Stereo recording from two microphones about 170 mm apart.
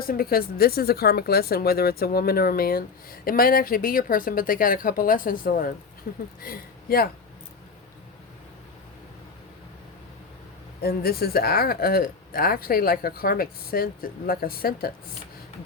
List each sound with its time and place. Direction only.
0.0 s speech: 60° left (ahead or behind)
10.8 s speech: 65° left (ahead or behind)